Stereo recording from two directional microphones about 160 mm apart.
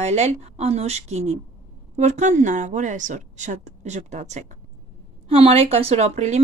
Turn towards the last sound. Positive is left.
turn(degrees=-45)  # may be behind; listen again after turning